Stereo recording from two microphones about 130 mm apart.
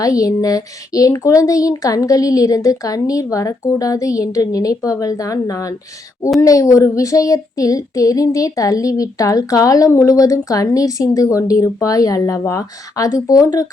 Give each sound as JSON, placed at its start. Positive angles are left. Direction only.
{"t": 0.0, "sound": "child singing", "side_deg": 25}